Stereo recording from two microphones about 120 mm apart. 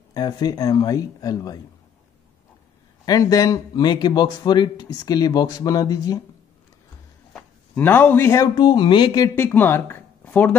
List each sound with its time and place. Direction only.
0.1 s speech: 35° left (ahead or behind)
3.1 s speech: 30° left (ahead or behind)
7.7 s a man's voice: 15° left (ahead or behind)
8.5 s speech: 40° left (ahead or behind)
9.3 s speech: 20° left (ahead or behind)